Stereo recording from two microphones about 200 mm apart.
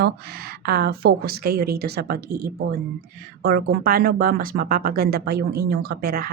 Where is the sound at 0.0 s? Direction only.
50° right (ahead or behind).